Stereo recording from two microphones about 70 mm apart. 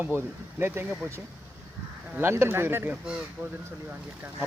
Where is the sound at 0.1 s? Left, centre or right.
Right.